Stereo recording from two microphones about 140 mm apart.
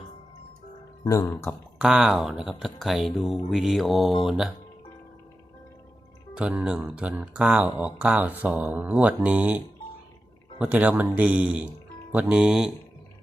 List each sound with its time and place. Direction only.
1.0 s speech: 25° left (ahead or behind)
1.8 s speech: 5° right (ahead or behind)
6.3 s speech: 5° right (ahead or behind)
10.6 s speech: 10° right (ahead or behind)